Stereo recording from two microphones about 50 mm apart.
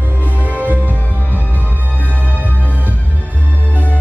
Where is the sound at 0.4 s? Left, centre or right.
Right.